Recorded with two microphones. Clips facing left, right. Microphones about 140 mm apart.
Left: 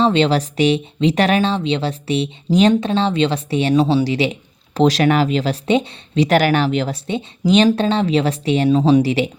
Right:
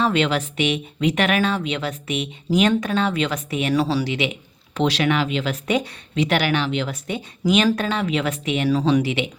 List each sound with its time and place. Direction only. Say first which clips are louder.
0.0 s speech: left 5 dB; 30° left (ahead or behind)
6.2 s speech: left 6 dB; 45° left (ahead or behind)